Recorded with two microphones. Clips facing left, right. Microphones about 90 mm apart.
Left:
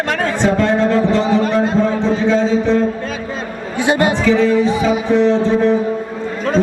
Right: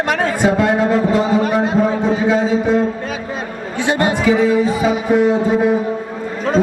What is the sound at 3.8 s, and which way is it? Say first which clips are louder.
Speech: left 2 dB; 20° left (ahead or behind).